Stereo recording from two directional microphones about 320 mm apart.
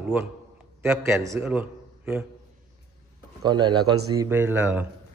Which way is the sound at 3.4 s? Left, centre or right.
Centre.